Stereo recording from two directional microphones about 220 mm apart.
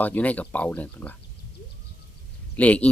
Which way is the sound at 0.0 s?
5° left (ahead or behind).